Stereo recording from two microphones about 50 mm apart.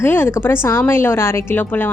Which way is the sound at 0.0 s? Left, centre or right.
Left.